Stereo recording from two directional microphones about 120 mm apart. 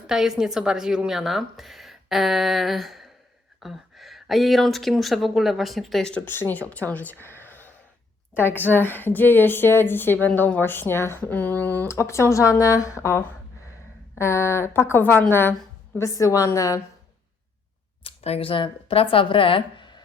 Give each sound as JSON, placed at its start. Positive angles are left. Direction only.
{"t": 0.1, "sound": "a woman's voice", "side_deg": -5}
{"t": 18.0, "sound": "speech", "side_deg": 55}